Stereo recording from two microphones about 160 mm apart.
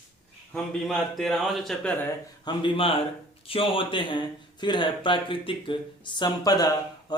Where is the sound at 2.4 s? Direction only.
35° left (ahead or behind).